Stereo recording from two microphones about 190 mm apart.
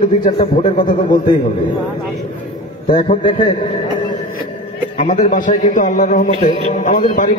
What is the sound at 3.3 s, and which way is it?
Speech, 25° left (ahead or behind).